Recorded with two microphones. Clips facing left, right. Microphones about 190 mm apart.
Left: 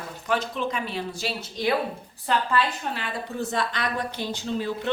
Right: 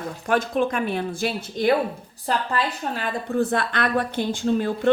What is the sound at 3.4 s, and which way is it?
Speech, 55° right (ahead or behind).